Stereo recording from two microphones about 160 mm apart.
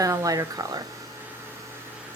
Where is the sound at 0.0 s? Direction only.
20° right (ahead or behind).